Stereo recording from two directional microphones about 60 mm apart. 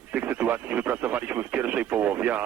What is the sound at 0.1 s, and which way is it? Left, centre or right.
Speech, right.